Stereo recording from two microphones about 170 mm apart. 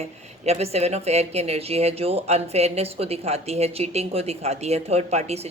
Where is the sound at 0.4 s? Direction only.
40° right (ahead or behind).